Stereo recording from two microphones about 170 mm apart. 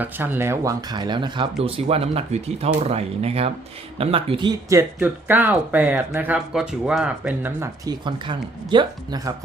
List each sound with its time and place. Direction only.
0.0 s speech: 10° right (ahead or behind)
7.9 s speech: 25° right (ahead or behind)